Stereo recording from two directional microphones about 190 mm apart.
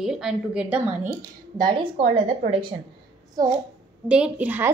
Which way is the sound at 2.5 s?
25° right (ahead or behind).